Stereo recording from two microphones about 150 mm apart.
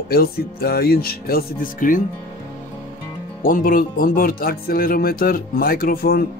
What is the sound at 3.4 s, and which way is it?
Speech, 65° left (ahead or behind).